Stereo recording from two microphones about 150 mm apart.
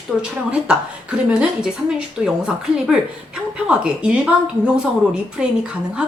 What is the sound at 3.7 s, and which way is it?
Speech, 10° right (ahead or behind).